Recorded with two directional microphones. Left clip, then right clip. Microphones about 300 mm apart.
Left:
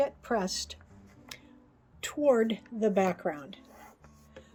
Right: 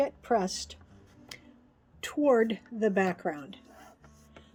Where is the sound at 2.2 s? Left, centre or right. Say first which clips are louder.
Right 1 dB; centre.